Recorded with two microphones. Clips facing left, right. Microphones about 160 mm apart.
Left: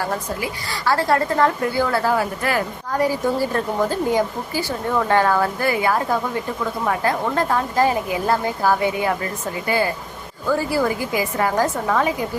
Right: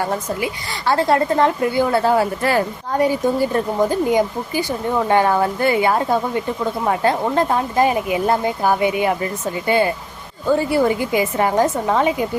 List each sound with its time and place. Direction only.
0.0 s a woman's voice: 25° right (ahead or behind)